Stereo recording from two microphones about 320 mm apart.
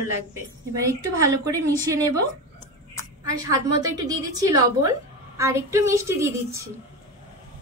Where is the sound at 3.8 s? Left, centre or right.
Centre.